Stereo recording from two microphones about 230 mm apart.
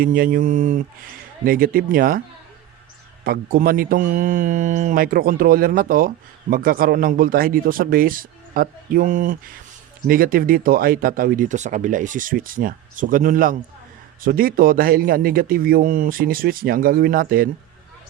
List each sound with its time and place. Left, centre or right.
0.0 s speech: right
3.2 s speech: right